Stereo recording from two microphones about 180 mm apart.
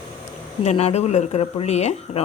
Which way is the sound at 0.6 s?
35° left (ahead or behind).